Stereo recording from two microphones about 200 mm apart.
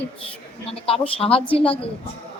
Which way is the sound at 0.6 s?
30° left (ahead or behind).